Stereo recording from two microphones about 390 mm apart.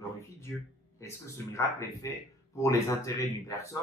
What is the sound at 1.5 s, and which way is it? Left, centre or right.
Speech, centre.